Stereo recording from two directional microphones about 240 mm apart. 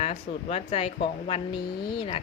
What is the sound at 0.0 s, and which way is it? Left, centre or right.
Speech, left.